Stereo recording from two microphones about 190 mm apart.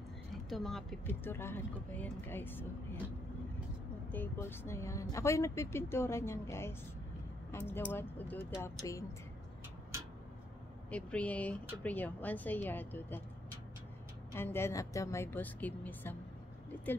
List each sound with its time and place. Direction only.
0.5 s speech: centre (ahead or behind)
4.1 s speech: 10° left (ahead or behind)
10.9 s speech: 5° left (ahead or behind)
14.3 s speech: 10° left (ahead or behind)